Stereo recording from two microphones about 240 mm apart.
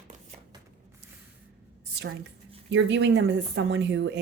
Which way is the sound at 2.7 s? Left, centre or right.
Right.